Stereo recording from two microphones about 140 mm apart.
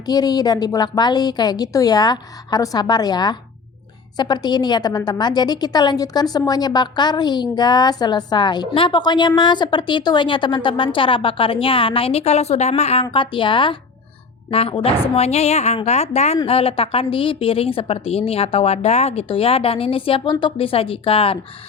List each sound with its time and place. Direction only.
0.0 s a woman's voice: 30° left (ahead or behind)